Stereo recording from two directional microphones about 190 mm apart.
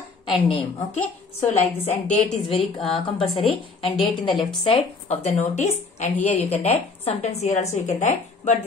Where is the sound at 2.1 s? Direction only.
30° left (ahead or behind).